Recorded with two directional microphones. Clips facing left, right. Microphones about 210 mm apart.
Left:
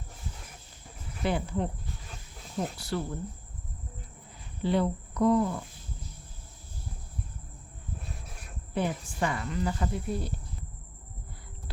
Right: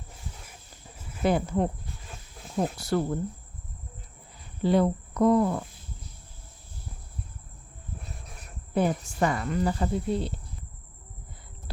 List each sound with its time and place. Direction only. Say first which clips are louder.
1.2 s speech: right 5 dB; 45° right (ahead or behind)
4.6 s speech: right 4 dB; 45° right (ahead or behind)
8.7 s speech: right 5 dB; 45° right (ahead or behind); by 10.3 s 25° right (ahead or behind)